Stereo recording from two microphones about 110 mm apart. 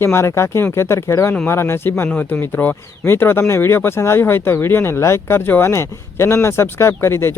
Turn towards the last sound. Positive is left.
turn(degrees=25)  # may be behind; listen again after turning